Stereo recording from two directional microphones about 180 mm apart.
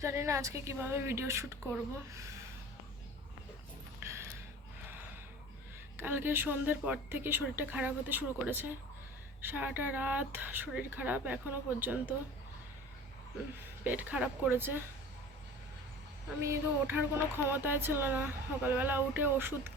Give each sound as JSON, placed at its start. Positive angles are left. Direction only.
{"t": 0.0, "sound": "speech", "side_deg": -15}
{"t": 4.0, "sound": "a sound", "side_deg": -15}
{"t": 6.0, "sound": "speech", "side_deg": -10}
{"t": 13.8, "sound": "speech", "side_deg": -10}
{"t": 16.4, "sound": "speech", "side_deg": -15}